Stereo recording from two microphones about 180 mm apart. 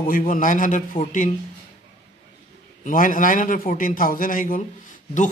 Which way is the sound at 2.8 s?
45° left (ahead or behind).